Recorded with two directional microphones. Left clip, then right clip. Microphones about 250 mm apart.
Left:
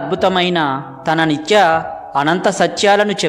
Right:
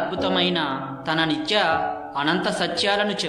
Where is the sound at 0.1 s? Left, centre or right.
Left.